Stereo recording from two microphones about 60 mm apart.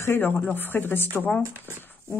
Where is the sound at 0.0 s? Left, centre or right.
Left.